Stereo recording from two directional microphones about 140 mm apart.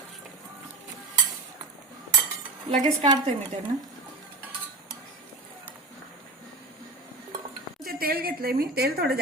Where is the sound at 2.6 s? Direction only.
60° right (ahead or behind).